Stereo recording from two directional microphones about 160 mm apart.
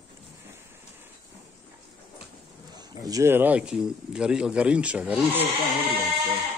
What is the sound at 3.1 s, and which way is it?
Speech, 20° right (ahead or behind).